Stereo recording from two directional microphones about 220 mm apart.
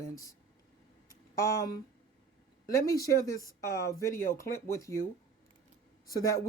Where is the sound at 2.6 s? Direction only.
15° left (ahead or behind).